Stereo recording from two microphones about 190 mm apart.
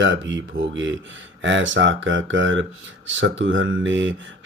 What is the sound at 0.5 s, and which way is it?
Speech, 50° right (ahead or behind).